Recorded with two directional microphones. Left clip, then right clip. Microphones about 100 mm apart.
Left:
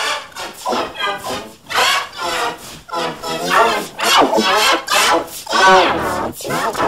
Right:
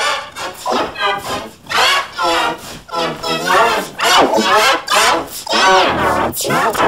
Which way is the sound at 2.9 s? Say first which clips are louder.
Right 3 dB; 15° left (ahead or behind).